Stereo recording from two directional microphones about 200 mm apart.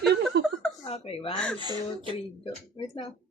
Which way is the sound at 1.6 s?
20° right (ahead or behind).